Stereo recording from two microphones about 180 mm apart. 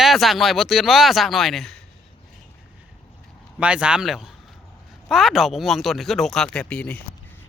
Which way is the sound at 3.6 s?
5° right (ahead or behind).